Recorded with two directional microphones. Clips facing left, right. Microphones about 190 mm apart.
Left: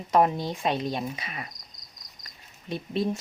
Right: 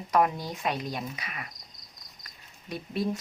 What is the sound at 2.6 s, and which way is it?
Speech, 25° left (ahead or behind).